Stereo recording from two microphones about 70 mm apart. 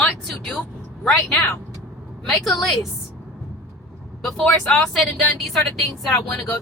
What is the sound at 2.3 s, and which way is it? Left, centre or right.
Speech, centre.